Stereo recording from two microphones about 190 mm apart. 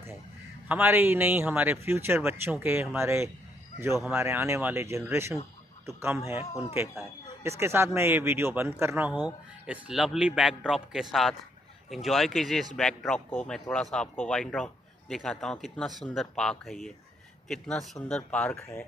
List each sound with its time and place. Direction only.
0.7 s a man's voice: 10° right (ahead or behind)
7.4 s a man's voice: 15° right (ahead or behind); by 18.9 s 5° left (ahead or behind)